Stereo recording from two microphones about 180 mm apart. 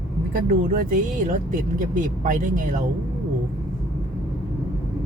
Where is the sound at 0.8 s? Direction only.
50° right (ahead or behind).